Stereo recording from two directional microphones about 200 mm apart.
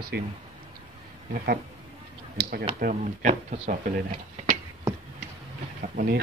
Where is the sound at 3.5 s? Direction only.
30° right (ahead or behind).